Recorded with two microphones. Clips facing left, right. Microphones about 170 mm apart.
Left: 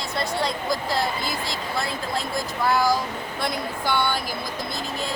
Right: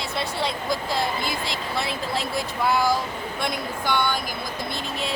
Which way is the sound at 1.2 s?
65° right (ahead or behind).